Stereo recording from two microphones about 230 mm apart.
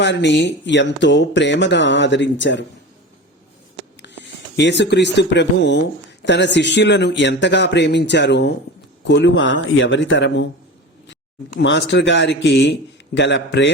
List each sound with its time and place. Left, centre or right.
0.0 s speech: left
4.0 s speech: left
11.6 s speech: left